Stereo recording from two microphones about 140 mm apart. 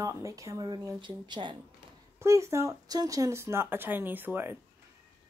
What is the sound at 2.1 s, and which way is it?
Speech, 20° right (ahead or behind).